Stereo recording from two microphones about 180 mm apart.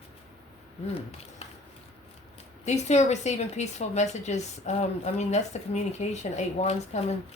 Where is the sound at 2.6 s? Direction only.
40° left (ahead or behind).